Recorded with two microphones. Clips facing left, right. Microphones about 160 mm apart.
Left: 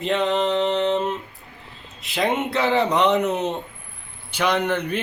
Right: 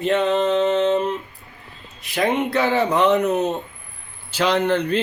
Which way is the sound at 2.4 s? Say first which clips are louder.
Right 1 dB; centre (ahead or behind).